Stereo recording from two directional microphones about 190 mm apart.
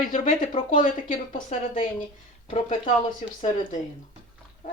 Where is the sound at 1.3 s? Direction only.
30° left (ahead or behind).